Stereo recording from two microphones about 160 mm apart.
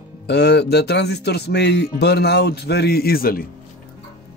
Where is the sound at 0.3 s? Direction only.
90° left; by 3.4 s 65° left (ahead or behind).